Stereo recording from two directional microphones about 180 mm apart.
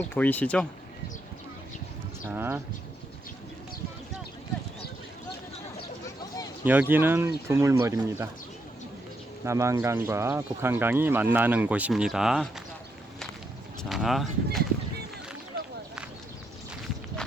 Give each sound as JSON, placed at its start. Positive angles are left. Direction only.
{"t": 0.0, "sound": "speech", "side_deg": 10}
{"t": 2.2, "sound": "speech", "side_deg": -10}
{"t": 6.7, "sound": "speech", "side_deg": -10}
{"t": 9.4, "sound": "speech", "side_deg": -15}
{"t": 13.8, "sound": "speech", "side_deg": 0}